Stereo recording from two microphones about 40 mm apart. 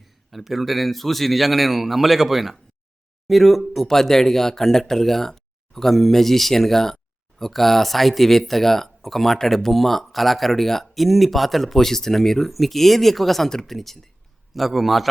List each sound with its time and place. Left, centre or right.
0.0 s speech: centre